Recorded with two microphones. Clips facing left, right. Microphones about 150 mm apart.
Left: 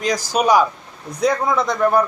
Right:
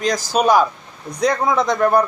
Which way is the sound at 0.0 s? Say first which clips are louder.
Right 1 dB; 10° left (ahead or behind).